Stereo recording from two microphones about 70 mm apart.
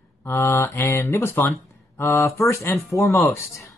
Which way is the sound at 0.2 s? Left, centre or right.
Left.